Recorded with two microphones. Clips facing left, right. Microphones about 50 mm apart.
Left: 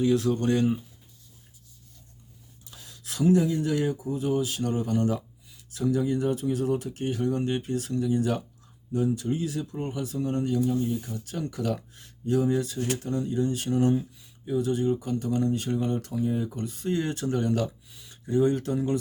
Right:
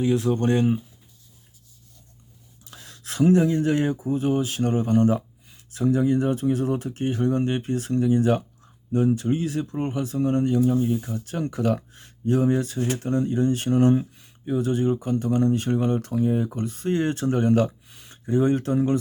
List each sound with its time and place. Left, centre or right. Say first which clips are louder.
0.0 s speech: right 2 dB; right
2.6 s a sound: right 4 dB; right
3.0 s speech: right 4 dB; right